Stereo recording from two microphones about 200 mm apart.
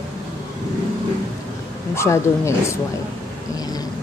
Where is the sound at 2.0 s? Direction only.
15° left (ahead or behind).